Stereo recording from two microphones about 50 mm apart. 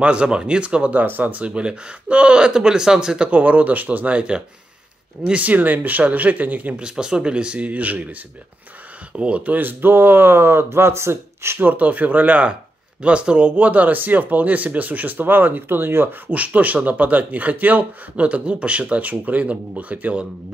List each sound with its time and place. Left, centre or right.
0.0 s a man's voice: right
1.0 s a man's voice: right; by 3.3 s centre
3.3 s speech: right
6.8 s a man's voice: centre; by 11.6 s right
11.6 s speech: right
16.3 s a man's voice: right